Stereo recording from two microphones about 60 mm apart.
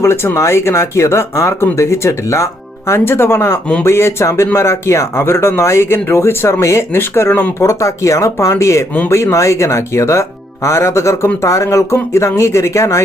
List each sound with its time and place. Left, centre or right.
0.0 s speech: left
7.6 s speech: left